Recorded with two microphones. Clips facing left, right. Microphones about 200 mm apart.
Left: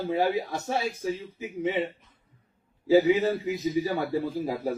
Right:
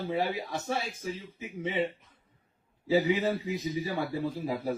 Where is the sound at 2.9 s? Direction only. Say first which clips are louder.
Left 5 dB; 40° left (ahead or behind).